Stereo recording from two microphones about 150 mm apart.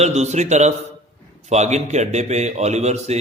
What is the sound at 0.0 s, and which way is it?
A man's voice, 50° right (ahead or behind).